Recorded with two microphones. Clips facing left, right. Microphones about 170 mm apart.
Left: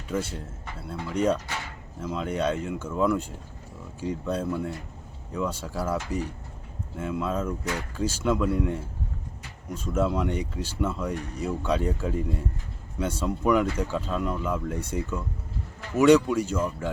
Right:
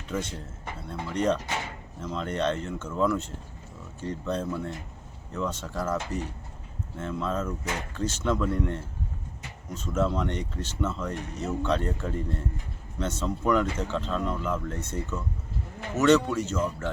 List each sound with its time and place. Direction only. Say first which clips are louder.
0.1 s speech: left 2 dB; 10° left (ahead or behind)